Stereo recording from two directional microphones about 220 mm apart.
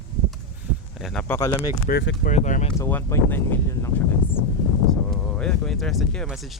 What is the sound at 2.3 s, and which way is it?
Speech, 35° left (ahead or behind).